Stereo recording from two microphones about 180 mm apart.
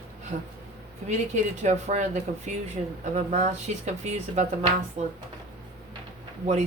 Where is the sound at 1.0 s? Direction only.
40° right (ahead or behind).